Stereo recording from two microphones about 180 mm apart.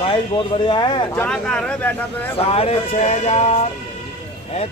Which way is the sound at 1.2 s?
5° left (ahead or behind).